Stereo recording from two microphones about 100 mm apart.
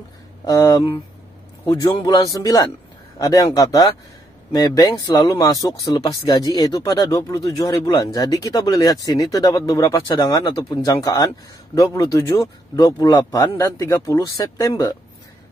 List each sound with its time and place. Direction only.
0.5 s speech: 25° left (ahead or behind)
1.9 s speech: 50° left (ahead or behind); by 6.1 s 35° left (ahead or behind)
6.2 s speech: 50° left (ahead or behind)
6.7 s speech: 40° left (ahead or behind)